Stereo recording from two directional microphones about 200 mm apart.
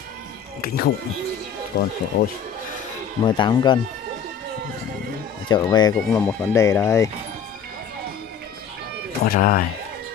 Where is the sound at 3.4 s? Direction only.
20° left (ahead or behind).